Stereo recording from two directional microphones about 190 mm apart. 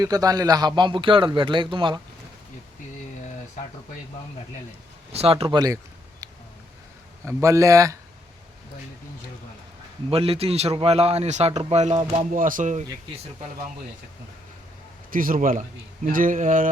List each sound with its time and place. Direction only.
0.0 s a man's voice: 20° right (ahead or behind)
5.1 s speech: 30° right (ahead or behind)
7.3 s speech: 15° right (ahead or behind)
10.1 s a man's voice: 30° right (ahead or behind)
15.1 s a sound: 45° right (ahead or behind)